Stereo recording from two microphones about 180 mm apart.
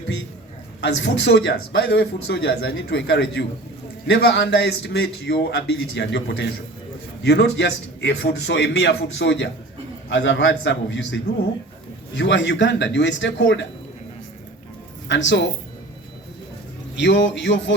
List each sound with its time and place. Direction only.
0.8 s a man's voice: 70° left (ahead or behind); by 13.7 s 90° left
15.0 s speech: 90° left
17.0 s a man's voice: 80° left